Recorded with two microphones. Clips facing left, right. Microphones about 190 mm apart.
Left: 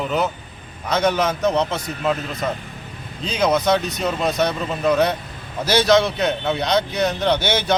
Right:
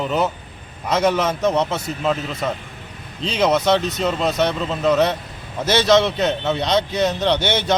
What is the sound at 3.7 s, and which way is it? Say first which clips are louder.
Speech: right 1 dB; 25° right (ahead or behind).